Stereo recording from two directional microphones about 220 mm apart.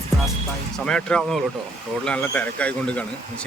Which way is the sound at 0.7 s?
5° left (ahead or behind).